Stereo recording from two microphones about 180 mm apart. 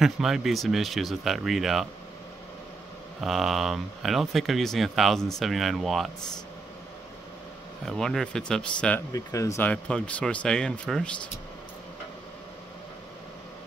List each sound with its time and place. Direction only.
0.0 s speech: centre (ahead or behind)
3.2 s speech: centre (ahead or behind)
7.8 s speech: centre (ahead or behind)
9.1 s speech: 15° left (ahead or behind)
9.6 s speech: 5° left (ahead or behind)